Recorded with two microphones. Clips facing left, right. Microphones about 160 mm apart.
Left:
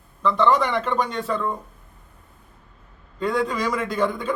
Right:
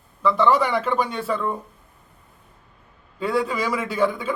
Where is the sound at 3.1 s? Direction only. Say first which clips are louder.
Even; 10° right (ahead or behind).